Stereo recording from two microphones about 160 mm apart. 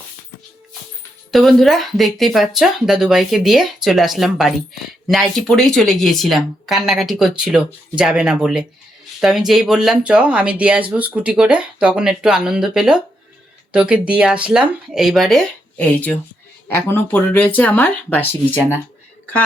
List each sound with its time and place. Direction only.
1.3 s speech: centre (ahead or behind)